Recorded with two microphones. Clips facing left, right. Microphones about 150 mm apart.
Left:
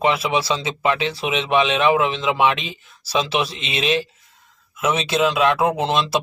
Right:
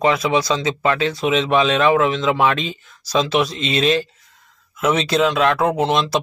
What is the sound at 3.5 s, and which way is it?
Speech, 40° right (ahead or behind).